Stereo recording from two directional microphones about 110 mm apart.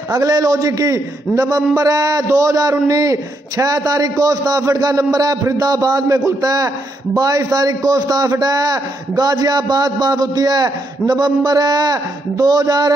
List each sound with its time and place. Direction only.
0.1 s a man's voice: 30° right (ahead or behind)